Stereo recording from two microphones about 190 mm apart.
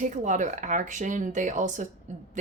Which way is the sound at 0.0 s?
40° right (ahead or behind).